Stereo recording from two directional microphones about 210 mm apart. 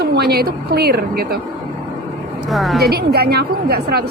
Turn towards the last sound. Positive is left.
turn(degrees=-50)  # may be behind; listen again after turning